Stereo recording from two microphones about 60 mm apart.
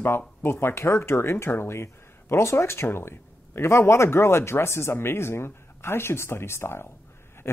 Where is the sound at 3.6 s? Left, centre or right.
Left.